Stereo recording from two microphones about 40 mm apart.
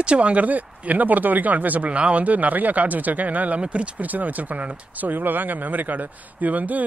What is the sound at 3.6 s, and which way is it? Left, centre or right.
Speech, right.